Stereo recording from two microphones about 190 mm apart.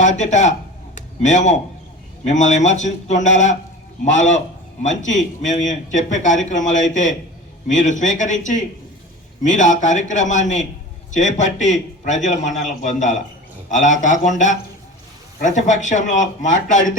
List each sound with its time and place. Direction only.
0.0 s speech: 40° left (ahead or behind)
0.9 s a sound: 40° left (ahead or behind)
2.2 s speech: 40° left (ahead or behind)